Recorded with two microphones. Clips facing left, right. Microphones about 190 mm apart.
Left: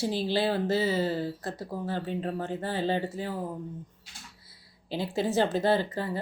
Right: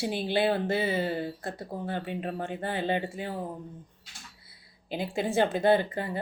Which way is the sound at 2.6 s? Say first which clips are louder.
Even; 60° right (ahead or behind).